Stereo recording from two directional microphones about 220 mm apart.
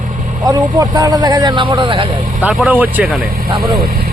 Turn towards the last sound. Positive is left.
turn(degrees=-40)  # may be behind; listen again after turning